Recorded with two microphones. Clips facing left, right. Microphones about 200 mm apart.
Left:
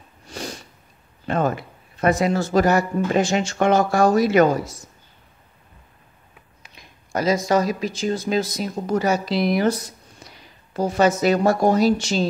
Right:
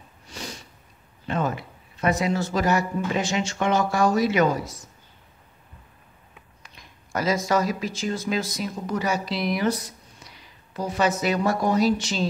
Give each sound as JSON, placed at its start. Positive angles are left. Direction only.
{"t": 0.3, "sound": "sniff", "side_deg": 45}
{"t": 1.2, "sound": "a man's voice", "side_deg": 50}
{"t": 7.2, "sound": "speech", "side_deg": 15}
{"t": 8.5, "sound": "a man's voice", "side_deg": 40}